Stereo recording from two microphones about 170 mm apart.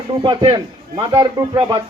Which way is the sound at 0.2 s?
25° right (ahead or behind).